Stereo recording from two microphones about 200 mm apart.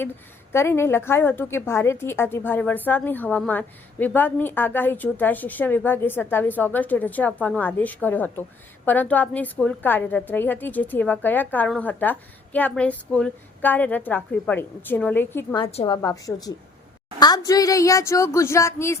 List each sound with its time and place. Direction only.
0.5 s a woman's voice: 10° left (ahead or behind)
15.5 s a woman's voice: 25° left (ahead or behind)
16.0 s a woman's voice: 15° left (ahead or behind)